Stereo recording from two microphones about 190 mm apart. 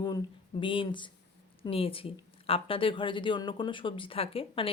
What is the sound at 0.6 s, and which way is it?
Speech, 25° left (ahead or behind).